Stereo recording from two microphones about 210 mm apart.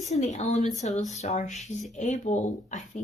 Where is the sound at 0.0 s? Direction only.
35° left (ahead or behind).